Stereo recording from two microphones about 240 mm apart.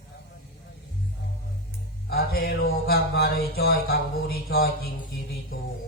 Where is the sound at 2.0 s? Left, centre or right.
Left.